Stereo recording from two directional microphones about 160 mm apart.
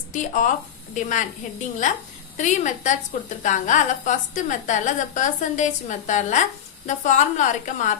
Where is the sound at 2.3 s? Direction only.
50° left (ahead or behind).